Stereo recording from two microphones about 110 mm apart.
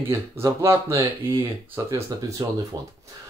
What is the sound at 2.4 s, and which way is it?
Speech, 40° right (ahead or behind).